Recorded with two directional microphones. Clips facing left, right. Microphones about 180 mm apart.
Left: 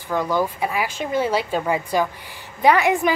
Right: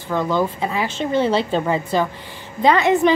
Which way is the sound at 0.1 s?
10° left (ahead or behind).